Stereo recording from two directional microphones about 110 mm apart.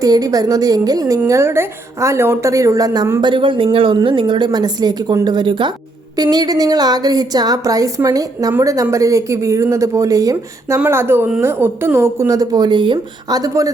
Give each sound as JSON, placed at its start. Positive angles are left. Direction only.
{"t": 0.0, "sound": "a woman's voice", "side_deg": -35}
{"t": 3.2, "sound": "a woman's voice", "side_deg": -45}
{"t": 6.3, "sound": "a woman's voice", "side_deg": -35}
{"t": 10.8, "sound": "a woman's voice", "side_deg": -20}
{"t": 13.4, "sound": "a woman's voice", "side_deg": -30}